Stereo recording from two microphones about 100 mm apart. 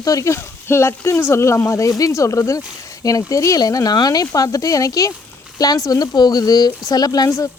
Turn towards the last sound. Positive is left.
turn(degrees=35)  # may be behind; listen again after turning